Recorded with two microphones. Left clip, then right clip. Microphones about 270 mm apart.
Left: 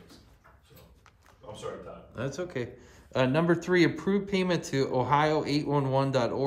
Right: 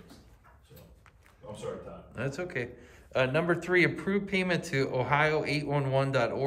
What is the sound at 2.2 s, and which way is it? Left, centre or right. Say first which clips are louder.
Speech: even; centre.